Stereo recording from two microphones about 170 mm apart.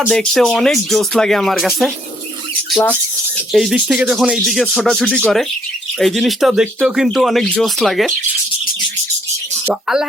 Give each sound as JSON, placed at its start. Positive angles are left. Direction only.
{"t": 0.0, "sound": "speech", "side_deg": 5}
{"t": 3.5, "sound": "speech", "side_deg": 0}
{"t": 9.6, "sound": "speech", "side_deg": -5}